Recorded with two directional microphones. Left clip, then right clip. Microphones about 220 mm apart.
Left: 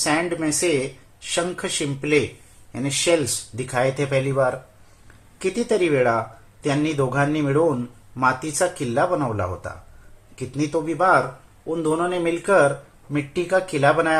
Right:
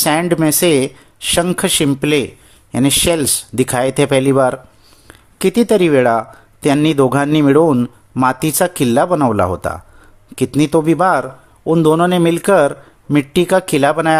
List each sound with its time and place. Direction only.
0.0 s speech: 50° right (ahead or behind)